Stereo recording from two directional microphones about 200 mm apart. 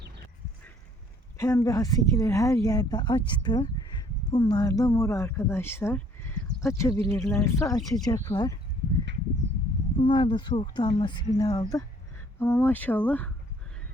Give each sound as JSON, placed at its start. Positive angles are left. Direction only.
{"t": 1.4, "sound": "speech", "side_deg": 15}
{"t": 10.0, "sound": "speech", "side_deg": 25}